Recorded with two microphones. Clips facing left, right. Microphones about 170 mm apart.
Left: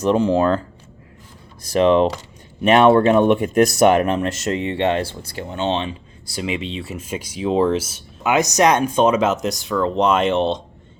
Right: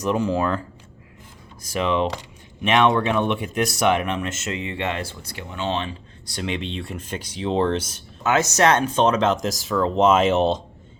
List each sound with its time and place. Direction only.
0.0 s speech: 30° left (ahead or behind)
1.6 s speech: 35° left (ahead or behind)
6.2 s speech: 5° left (ahead or behind)